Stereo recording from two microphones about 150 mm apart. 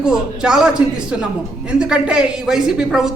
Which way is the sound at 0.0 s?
5° right (ahead or behind).